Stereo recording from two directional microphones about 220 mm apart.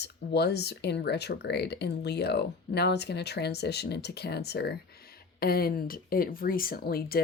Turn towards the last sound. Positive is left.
turn(degrees=45)  # may be behind; listen again after turning